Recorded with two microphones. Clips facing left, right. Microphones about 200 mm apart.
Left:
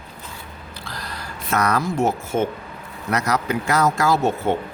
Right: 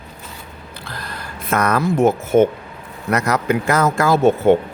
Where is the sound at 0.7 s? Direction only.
55° right (ahead or behind).